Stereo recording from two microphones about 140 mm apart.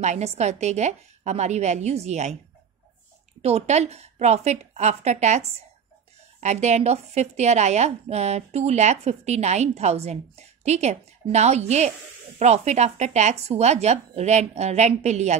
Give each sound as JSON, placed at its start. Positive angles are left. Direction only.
{"t": 0.0, "sound": "a woman's voice", "side_deg": -55}
{"t": 3.4, "sound": "a woman's voice", "side_deg": -50}